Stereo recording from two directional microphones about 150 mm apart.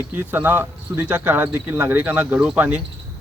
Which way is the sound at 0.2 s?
10° right (ahead or behind).